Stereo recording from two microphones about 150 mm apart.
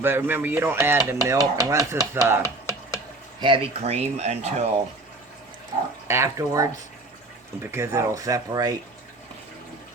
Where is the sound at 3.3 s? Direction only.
35° right (ahead or behind).